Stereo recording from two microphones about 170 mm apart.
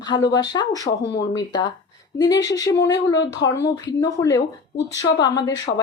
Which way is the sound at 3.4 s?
90° left.